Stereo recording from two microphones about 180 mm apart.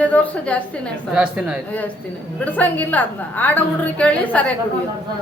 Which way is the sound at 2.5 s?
10° left (ahead or behind).